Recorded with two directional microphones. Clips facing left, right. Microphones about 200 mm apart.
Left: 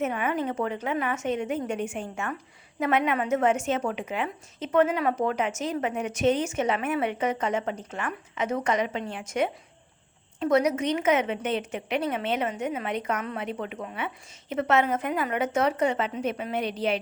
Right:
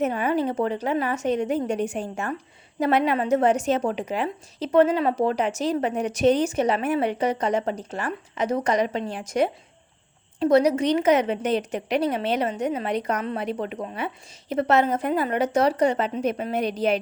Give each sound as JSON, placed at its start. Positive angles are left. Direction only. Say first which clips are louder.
{"t": 0.0, "sound": "a woman's voice", "louder": "right 4 dB", "side_deg": -35}